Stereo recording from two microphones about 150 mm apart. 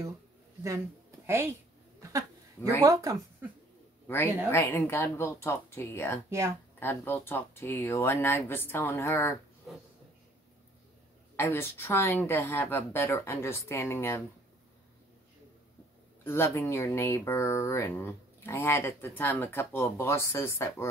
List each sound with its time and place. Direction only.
0.7 s a woman's voice: 15° right (ahead or behind)
2.0 s a sound: 20° right (ahead or behind)
2.8 s speech: 25° right (ahead or behind)
4.1 s speech: 15° left (ahead or behind)
11.3 s speech: 15° left (ahead or behind)
16.3 s speech: 15° left (ahead or behind)